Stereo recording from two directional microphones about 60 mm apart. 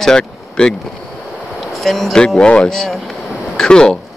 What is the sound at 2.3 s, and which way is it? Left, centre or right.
Speech, centre.